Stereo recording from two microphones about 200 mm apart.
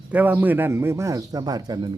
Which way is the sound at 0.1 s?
10° right (ahead or behind).